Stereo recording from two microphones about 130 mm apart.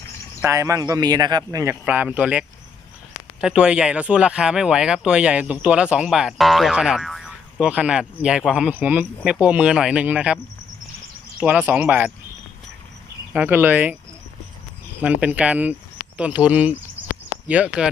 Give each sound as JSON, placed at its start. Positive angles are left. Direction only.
{"t": 0.4, "sound": "a man's voice", "side_deg": -20}
{"t": 1.8, "sound": "speech", "side_deg": -10}
{"t": 3.4, "sound": "speech", "side_deg": -5}
{"t": 13.3, "sound": "speech", "side_deg": -10}
{"t": 15.0, "sound": "speech", "side_deg": -10}